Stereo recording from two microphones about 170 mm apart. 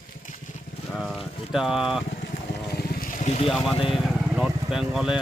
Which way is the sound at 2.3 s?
55° left (ahead or behind).